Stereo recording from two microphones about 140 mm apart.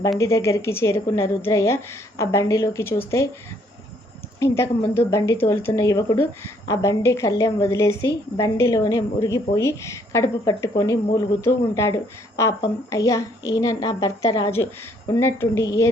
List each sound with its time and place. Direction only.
0.2 s a woman's voice: 20° left (ahead or behind)
4.4 s a woman's voice: 20° left (ahead or behind)